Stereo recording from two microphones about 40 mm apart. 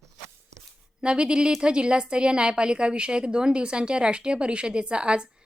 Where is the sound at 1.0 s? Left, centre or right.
Right.